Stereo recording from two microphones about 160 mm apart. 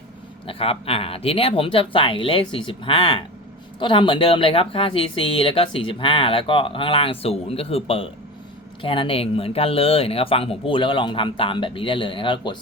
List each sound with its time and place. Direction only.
0.4 s a woman's voice: 35° left (ahead or behind)